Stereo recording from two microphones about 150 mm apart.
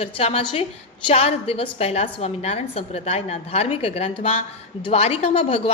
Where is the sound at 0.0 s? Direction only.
40° left (ahead or behind).